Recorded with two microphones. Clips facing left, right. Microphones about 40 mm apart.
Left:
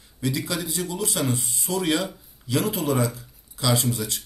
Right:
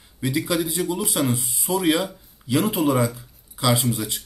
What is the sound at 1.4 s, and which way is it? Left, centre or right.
Speech, centre.